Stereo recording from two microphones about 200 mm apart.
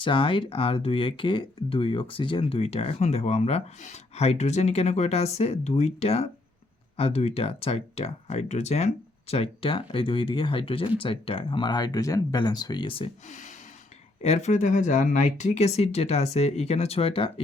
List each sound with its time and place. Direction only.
0.0 s speech: 25° left (ahead or behind)